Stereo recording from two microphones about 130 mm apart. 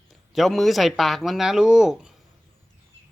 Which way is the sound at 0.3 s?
Centre (ahead or behind).